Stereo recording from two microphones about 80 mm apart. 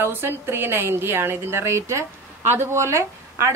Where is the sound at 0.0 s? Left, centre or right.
Right.